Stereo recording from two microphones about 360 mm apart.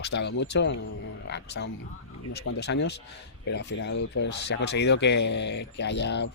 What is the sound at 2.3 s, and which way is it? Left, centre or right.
Speech, left.